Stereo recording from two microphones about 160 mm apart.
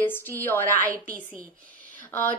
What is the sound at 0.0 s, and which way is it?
Speech, 15° left (ahead or behind).